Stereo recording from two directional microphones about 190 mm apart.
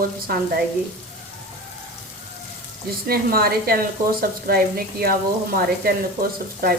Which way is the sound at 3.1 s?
50° right (ahead or behind).